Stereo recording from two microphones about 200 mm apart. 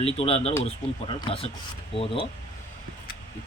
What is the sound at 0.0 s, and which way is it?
Speech, 30° left (ahead or behind).